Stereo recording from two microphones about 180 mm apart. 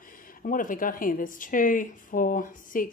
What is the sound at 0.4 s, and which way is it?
A woman's voice, 50° left (ahead or behind).